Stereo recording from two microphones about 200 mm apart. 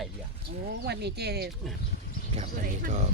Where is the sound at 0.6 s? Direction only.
55° right (ahead or behind).